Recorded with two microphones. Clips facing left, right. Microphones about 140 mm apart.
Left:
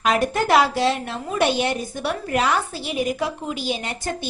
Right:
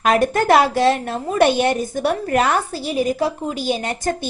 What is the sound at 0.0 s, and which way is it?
A woman's voice, 50° right (ahead or behind).